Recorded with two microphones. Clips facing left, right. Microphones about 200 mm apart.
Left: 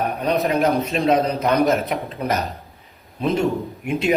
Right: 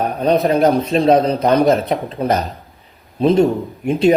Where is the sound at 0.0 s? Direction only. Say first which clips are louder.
Right 5 dB; 30° right (ahead or behind).